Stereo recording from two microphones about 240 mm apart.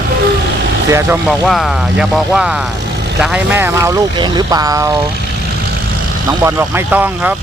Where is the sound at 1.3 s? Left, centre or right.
Centre.